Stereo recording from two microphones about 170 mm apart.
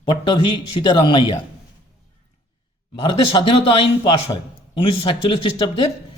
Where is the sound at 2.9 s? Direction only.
30° left (ahead or behind).